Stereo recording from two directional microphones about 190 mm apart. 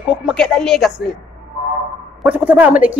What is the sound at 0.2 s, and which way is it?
Speech, centre (ahead or behind).